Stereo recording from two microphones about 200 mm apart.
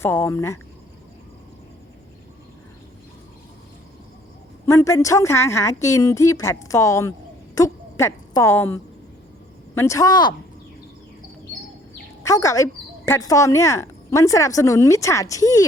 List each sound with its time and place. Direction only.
0.0 s speech: 10° left (ahead or behind)
4.6 s speech: 15° left (ahead or behind)
7.5 s a sound: 15° left (ahead or behind)
9.7 s speech: 15° left (ahead or behind)
12.2 s speech: 15° left (ahead or behind)